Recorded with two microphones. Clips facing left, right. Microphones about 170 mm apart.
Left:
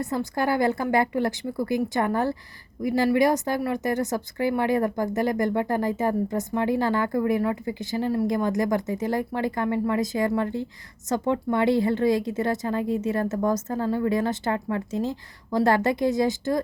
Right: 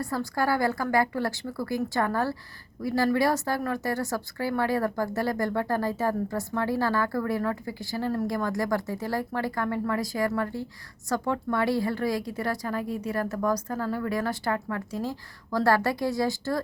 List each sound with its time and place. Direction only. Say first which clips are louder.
0.0 s speech: left 2 dB; 20° left (ahead or behind)